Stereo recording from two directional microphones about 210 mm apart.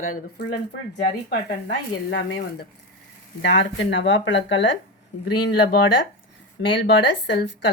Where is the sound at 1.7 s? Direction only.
55° left (ahead or behind).